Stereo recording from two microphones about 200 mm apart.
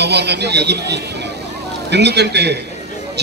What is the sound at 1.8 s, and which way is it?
Speech, 60° right (ahead or behind).